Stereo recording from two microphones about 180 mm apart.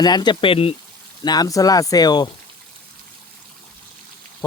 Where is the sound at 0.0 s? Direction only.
25° left (ahead or behind).